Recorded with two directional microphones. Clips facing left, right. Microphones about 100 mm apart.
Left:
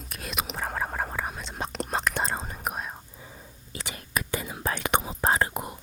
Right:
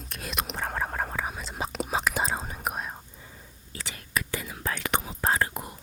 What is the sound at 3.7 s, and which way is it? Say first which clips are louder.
Whispering: even; 20° left (ahead or behind).